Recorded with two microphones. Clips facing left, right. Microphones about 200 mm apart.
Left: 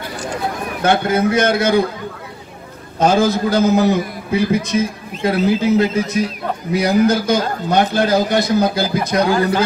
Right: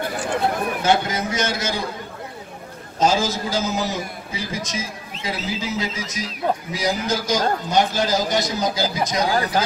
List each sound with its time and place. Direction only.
0.8 s a man's voice: 55° left (ahead or behind)
3.0 s a man's voice: 60° left (ahead or behind)